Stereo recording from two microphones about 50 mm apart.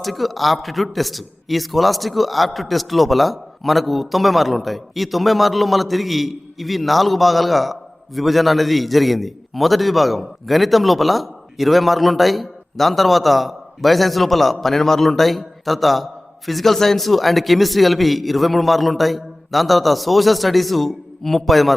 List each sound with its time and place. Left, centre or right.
0.0 s a man's voice: centre